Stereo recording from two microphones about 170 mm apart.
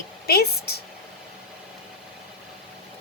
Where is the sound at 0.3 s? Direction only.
70° left (ahead or behind).